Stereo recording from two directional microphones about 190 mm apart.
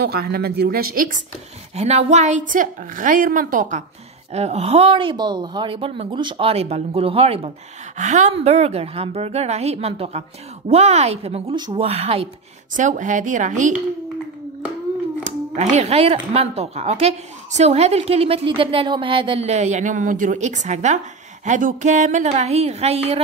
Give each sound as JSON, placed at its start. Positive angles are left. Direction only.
{"t": 0.0, "sound": "a woman's voice", "side_deg": -55}
{"t": 1.8, "sound": "a woman's voice", "side_deg": -35}
{"t": 12.7, "sound": "speech", "side_deg": -40}
{"t": 15.2, "sound": "speech", "side_deg": -35}